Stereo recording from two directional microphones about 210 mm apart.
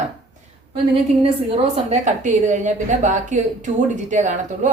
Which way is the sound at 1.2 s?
25° right (ahead or behind).